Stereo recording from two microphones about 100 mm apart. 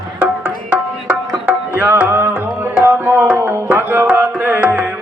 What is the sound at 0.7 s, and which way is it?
Music, 15° right (ahead or behind).